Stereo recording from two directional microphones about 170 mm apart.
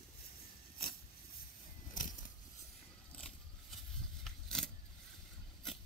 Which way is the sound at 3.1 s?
5° left (ahead or behind).